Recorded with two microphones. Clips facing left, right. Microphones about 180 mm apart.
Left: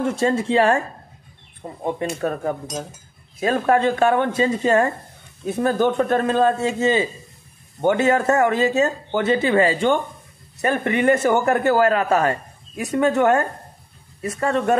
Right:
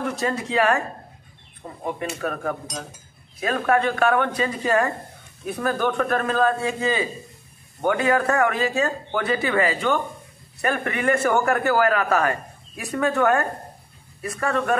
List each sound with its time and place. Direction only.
0.0 s a man's voice: 25° left (ahead or behind)